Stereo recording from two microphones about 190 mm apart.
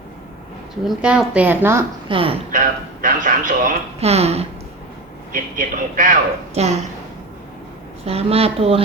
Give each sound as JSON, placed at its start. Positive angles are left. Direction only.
{"t": 0.9, "sound": "a woman's voice", "side_deg": -5}
{"t": 2.0, "sound": "speech", "side_deg": -25}
{"t": 2.5, "sound": "a woman's voice", "side_deg": -45}
{"t": 5.3, "sound": "a woman's voice", "side_deg": -45}
{"t": 8.0, "sound": "speech", "side_deg": -30}